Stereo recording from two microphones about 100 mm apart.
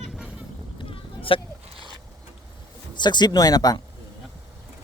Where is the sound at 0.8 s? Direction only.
65° left (ahead or behind).